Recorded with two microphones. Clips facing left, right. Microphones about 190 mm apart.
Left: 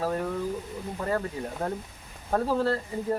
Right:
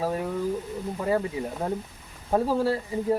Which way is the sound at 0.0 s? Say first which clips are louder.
Right 1 dB; 10° right (ahead or behind).